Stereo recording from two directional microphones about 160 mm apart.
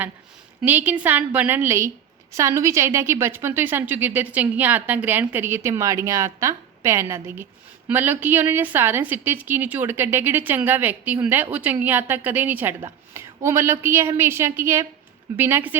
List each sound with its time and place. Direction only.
0.6 s a woman's voice: 10° right (ahead or behind)